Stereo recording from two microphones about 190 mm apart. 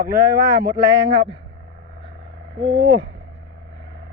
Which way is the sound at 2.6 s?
65° right (ahead or behind).